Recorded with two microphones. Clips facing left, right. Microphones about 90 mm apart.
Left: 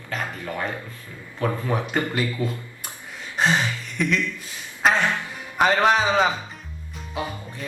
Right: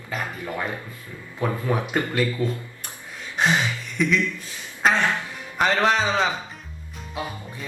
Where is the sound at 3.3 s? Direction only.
Centre (ahead or behind).